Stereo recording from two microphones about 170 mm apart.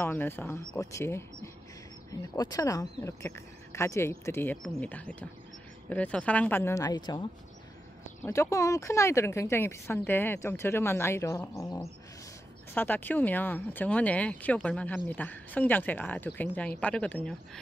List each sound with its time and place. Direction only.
0.0 s speech: 15° left (ahead or behind)
8.3 s speech: 20° left (ahead or behind)